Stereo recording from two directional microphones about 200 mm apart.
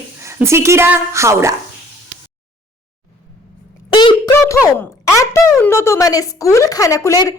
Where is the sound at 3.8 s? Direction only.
25° left (ahead or behind).